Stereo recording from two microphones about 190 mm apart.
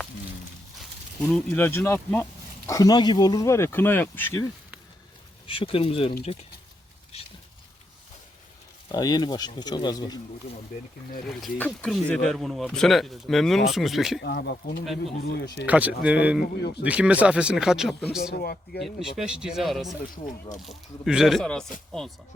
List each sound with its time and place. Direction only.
1.3 s speech: 5° left (ahead or behind)
5.5 s speech: 30° left (ahead or behind)
8.9 s speech: 20° left (ahead or behind)
11.3 s speech: centre (ahead or behind)
14.2 s speech: 60° left (ahead or behind)
15.6 s speech: 10° right (ahead or behind)
18.3 s speech: 50° left (ahead or behind)
18.8 s speech: centre (ahead or behind)